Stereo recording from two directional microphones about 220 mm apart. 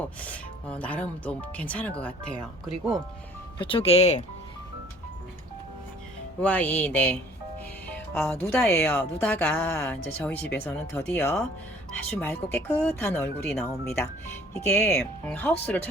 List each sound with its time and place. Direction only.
0.2 s speech: 5° left (ahead or behind)
3.6 s speech: 25° left (ahead or behind)
6.4 s speech: 5° left (ahead or behind)
14.7 s speech: 10° left (ahead or behind)